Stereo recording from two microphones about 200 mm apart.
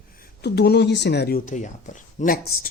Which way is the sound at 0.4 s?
55° left (ahead or behind).